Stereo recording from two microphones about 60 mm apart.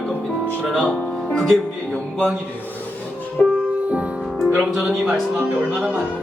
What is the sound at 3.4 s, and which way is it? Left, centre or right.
Music, centre.